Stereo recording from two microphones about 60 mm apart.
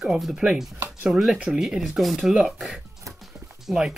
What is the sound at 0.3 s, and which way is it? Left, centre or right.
Speech, centre.